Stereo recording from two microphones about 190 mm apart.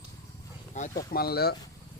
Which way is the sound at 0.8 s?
40° left (ahead or behind).